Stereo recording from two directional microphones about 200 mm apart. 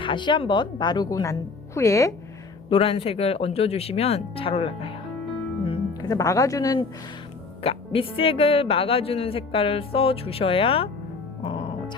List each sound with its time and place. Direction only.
0.0 s speech: 25° left (ahead or behind)
2.6 s speech: 30° left (ahead or behind)
7.6 s speech: 30° left (ahead or behind)